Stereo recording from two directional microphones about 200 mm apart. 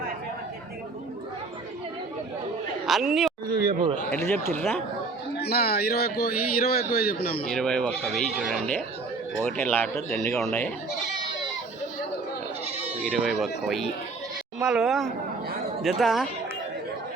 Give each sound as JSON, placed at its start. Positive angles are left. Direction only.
{"t": 2.8, "sound": "a sound", "side_deg": 0}
{"t": 3.6, "sound": "a man's voice", "side_deg": -45}
{"t": 4.1, "sound": "a man's voice", "side_deg": 5}
{"t": 5.4, "sound": "a man's voice", "side_deg": 50}
{"t": 7.5, "sound": "a man's voice", "side_deg": 5}
{"t": 13.0, "sound": "speech", "side_deg": -5}